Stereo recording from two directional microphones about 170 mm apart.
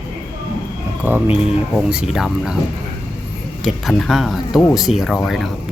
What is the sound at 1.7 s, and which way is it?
Speech, 5° right (ahead or behind).